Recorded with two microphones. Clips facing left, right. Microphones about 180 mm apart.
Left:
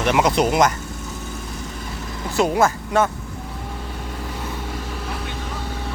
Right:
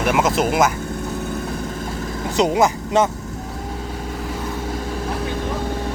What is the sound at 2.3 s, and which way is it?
Speech, 20° right (ahead or behind).